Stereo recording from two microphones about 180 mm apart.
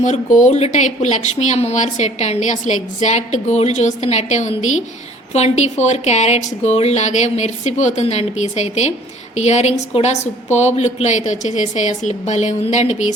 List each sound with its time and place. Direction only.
0.0 s speech: 40° left (ahead or behind)